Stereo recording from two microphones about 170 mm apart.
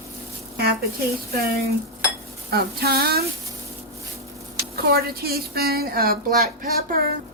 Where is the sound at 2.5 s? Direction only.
65° right (ahead or behind).